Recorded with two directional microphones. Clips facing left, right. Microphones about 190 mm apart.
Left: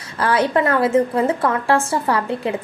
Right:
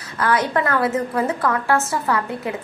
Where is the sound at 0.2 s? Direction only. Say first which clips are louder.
Left 3 dB; 30° left (ahead or behind).